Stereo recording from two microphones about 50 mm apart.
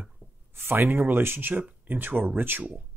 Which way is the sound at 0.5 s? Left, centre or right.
Right.